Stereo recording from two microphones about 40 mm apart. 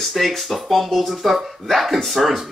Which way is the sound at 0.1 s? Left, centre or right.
Centre.